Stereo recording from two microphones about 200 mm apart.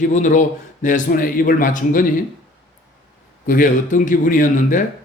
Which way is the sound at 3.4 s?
45° left (ahead or behind).